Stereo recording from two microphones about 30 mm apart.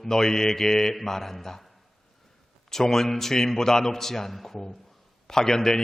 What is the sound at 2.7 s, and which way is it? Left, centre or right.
A man's voice, centre.